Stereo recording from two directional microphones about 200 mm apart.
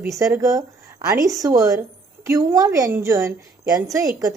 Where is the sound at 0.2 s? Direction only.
15° right (ahead or behind).